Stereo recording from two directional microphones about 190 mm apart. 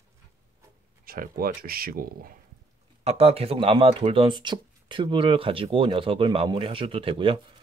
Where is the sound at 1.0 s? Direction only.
50° right (ahead or behind).